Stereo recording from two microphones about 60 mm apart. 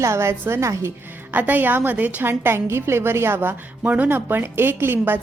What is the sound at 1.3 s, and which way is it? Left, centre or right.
Speech, right.